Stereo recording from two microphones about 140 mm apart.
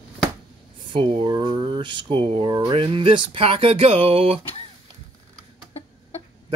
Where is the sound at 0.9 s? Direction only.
35° right (ahead or behind).